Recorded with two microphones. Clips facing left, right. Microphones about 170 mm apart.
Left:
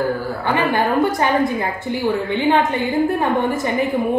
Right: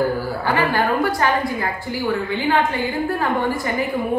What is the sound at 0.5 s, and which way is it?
A woman's voice, 20° left (ahead or behind).